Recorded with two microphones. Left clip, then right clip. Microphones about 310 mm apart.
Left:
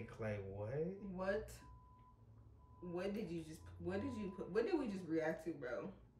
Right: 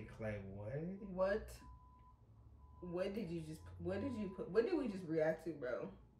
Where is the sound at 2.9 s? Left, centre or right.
Centre.